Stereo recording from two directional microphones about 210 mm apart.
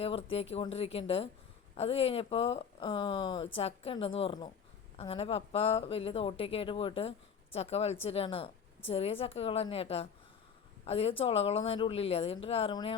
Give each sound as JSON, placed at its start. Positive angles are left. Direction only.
{"t": 0.0, "sound": "speech", "side_deg": 25}